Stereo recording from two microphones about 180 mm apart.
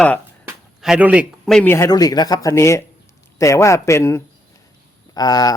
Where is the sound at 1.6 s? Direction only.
15° left (ahead or behind).